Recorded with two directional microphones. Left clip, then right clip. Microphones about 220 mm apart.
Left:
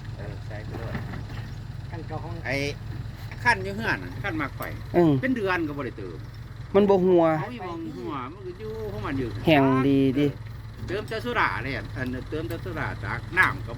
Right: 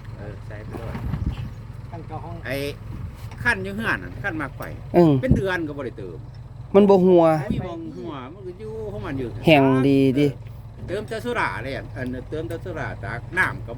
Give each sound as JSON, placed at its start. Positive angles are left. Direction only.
{"t": 2.4, "sound": "speech", "side_deg": -45}
{"t": 5.4, "sound": "speech", "side_deg": -15}
{"t": 9.0, "sound": "speech", "side_deg": -20}
{"t": 9.5, "sound": "speech", "side_deg": -30}